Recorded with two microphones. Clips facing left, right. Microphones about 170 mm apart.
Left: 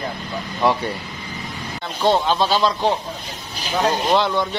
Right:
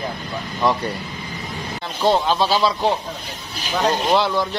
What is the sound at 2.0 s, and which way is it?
Speech, centre (ahead or behind).